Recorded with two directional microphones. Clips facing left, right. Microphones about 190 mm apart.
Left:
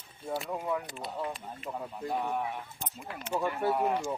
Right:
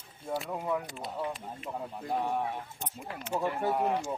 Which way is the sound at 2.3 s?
30° right (ahead or behind).